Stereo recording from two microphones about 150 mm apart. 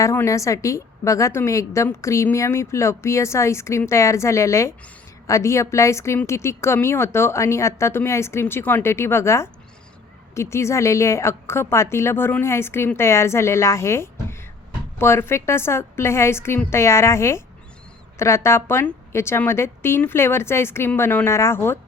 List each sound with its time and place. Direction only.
0.0 s a woman's voice: 20° left (ahead or behind)